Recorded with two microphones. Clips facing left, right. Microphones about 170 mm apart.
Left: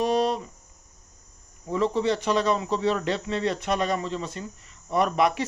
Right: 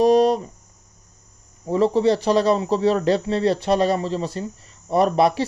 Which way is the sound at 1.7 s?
35° right (ahead or behind).